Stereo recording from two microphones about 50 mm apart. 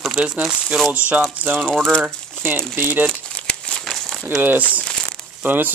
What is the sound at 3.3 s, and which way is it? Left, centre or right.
Crumpling, left.